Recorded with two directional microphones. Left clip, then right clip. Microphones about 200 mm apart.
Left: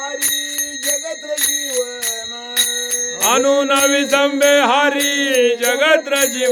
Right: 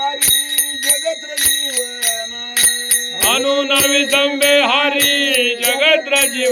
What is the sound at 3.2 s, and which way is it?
Bell, 40° left (ahead or behind).